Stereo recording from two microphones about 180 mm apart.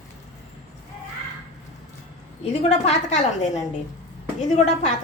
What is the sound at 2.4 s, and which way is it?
A woman's voice, 40° left (ahead or behind).